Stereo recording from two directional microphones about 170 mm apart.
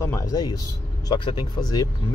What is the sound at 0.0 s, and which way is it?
Speech, 15° left (ahead or behind).